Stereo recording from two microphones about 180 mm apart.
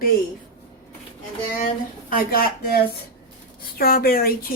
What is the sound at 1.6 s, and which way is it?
Speech, 55° left (ahead or behind).